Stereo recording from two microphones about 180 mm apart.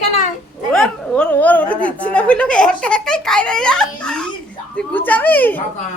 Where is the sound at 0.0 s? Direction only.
40° left (ahead or behind).